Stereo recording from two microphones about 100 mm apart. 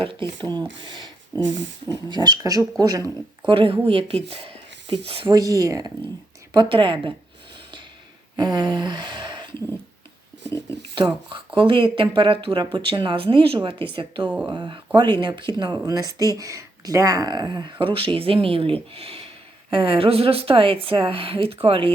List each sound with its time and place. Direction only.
0.0 s speech: 60° right (ahead or behind); by 3.1 s 35° right (ahead or behind)
3.4 s speech: 60° right (ahead or behind)
5.3 s speech: 35° right (ahead or behind)
6.5 s speech: 50° right (ahead or behind)
8.4 s a sound: 45° right (ahead or behind)
10.9 s speech: 55° right (ahead or behind)